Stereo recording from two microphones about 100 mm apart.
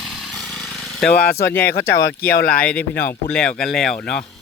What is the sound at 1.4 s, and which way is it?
Speech, 20° left (ahead or behind).